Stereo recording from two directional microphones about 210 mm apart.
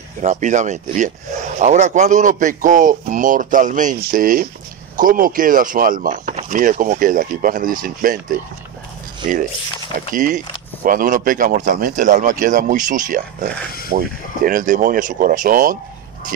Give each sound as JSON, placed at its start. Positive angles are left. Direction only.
{"t": 0.2, "sound": "speech", "side_deg": -35}
{"t": 10.1, "sound": "speech", "side_deg": -40}